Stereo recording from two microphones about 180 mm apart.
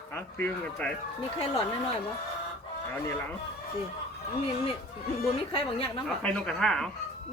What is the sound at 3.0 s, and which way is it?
Speech, 15° left (ahead or behind).